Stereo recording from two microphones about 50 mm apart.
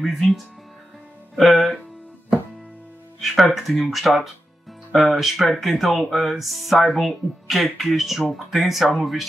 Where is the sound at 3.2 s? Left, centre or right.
Centre.